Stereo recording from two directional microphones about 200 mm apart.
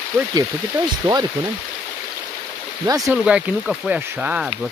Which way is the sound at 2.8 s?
15° right (ahead or behind).